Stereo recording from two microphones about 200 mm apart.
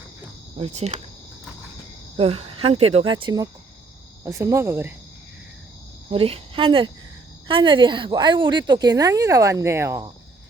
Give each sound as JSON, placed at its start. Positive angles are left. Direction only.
{"t": 0.6, "sound": "speech", "side_deg": -35}
{"t": 2.1, "sound": "a woman's voice", "side_deg": -30}
{"t": 6.1, "sound": "a woman's voice", "side_deg": -30}